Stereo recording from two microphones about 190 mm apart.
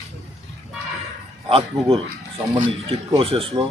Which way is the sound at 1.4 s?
30° right (ahead or behind).